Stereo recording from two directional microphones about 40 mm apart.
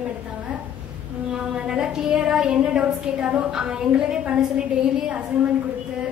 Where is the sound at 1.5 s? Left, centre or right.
Right.